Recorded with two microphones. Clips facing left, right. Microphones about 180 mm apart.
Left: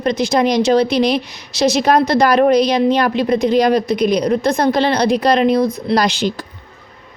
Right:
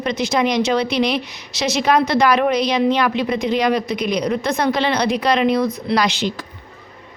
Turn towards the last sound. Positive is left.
turn(degrees=35)  # may be behind; listen again after turning